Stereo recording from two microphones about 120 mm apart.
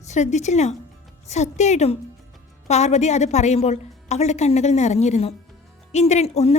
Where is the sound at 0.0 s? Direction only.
75° left (ahead or behind).